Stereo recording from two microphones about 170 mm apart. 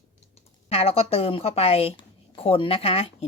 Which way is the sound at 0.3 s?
35° left (ahead or behind).